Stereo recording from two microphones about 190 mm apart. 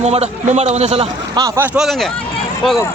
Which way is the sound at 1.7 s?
Centre (ahead or behind).